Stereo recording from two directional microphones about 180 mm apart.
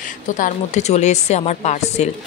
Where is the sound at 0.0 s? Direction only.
45° left (ahead or behind).